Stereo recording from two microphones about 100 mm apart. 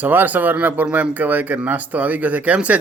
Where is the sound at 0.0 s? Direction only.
20° right (ahead or behind).